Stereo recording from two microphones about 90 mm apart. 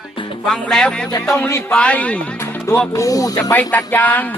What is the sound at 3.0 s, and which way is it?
Speech, 40° left (ahead or behind).